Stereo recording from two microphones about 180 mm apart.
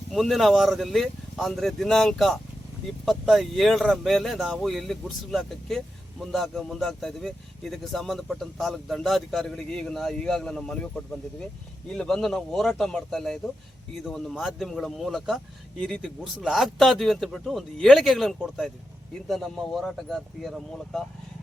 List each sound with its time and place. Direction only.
0.1 s speech: centre (ahead or behind)